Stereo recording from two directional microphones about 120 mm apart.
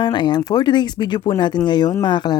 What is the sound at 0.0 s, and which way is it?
Speech, 40° left (ahead or behind).